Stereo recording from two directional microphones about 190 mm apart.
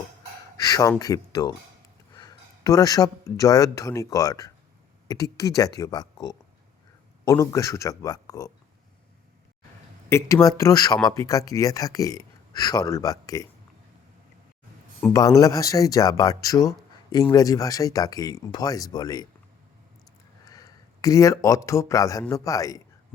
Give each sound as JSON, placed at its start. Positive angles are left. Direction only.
{"t": 0.6, "sound": "speech", "side_deg": 20}
{"t": 10.1, "sound": "speech", "side_deg": 15}
{"t": 15.1, "sound": "speech", "side_deg": 15}
{"t": 20.5, "sound": "speech", "side_deg": 20}